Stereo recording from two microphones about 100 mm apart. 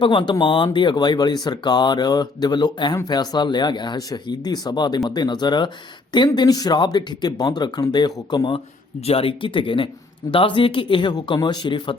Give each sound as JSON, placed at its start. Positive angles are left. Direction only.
{"t": 0.0, "sound": "speech", "side_deg": 55}
{"t": 9.0, "sound": "speech", "side_deg": 70}